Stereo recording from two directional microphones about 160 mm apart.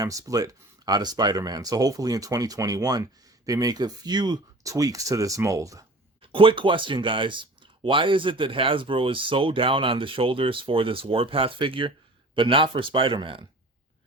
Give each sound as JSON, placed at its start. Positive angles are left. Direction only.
{"t": 0.0, "sound": "speech", "side_deg": -20}
{"t": 6.3, "sound": "speech", "side_deg": -35}